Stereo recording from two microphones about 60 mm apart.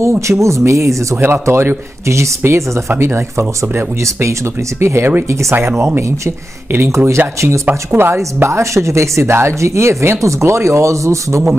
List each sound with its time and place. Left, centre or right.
0.0 s speech: right
1.1 s speech: right
3.1 s speech: right
7.6 s speech: right
8.4 s speech: right